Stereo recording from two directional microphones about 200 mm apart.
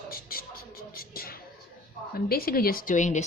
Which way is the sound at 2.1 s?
50° left (ahead or behind).